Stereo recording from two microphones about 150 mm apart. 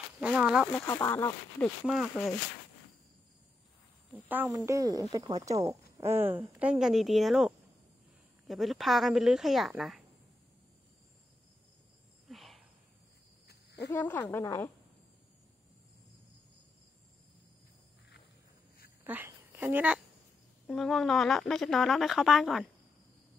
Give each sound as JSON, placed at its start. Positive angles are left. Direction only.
{"t": 0.2, "sound": "speech", "side_deg": -5}
{"t": 0.8, "sound": "speech", "side_deg": 20}
{"t": 1.9, "sound": "a woman's voice", "side_deg": 0}
{"t": 4.3, "sound": "a woman's voice", "side_deg": -10}
{"t": 12.3, "sound": "cricket", "side_deg": 0}
{"t": 13.8, "sound": "a woman's voice", "side_deg": 15}
{"t": 19.0, "sound": "a woman's voice", "side_deg": -10}
{"t": 20.6, "sound": "a woman's voice", "side_deg": 0}